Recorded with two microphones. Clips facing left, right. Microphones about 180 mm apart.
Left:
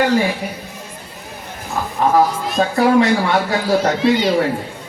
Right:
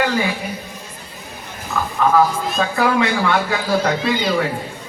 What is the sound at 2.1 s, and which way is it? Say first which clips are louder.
Speech: left 2 dB; 35° left (ahead or behind).